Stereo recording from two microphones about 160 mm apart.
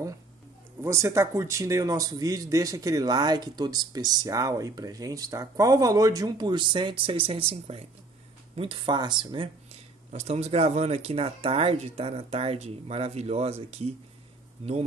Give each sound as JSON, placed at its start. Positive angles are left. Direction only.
{"t": 0.7, "sound": "a man's voice", "side_deg": -15}
{"t": 10.1, "sound": "speech", "side_deg": -40}